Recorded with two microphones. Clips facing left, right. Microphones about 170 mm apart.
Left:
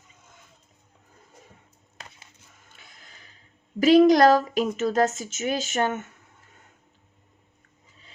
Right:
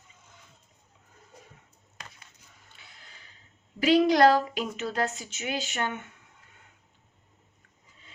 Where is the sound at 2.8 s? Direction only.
45° left (ahead or behind).